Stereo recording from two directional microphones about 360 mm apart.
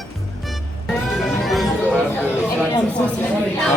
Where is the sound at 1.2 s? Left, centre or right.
Centre.